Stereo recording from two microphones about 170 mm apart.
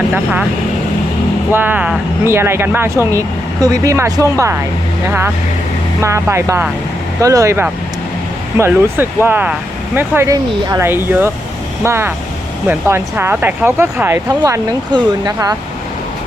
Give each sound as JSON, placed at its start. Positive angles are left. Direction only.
{"t": 1.5, "sound": "speech", "side_deg": -10}
{"t": 6.0, "sound": "speech", "side_deg": -15}